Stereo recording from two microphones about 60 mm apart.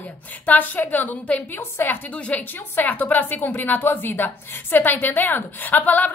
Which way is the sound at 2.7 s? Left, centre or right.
Left.